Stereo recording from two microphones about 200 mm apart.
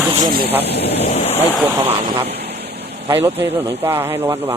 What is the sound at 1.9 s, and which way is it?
Speech, 30° right (ahead or behind).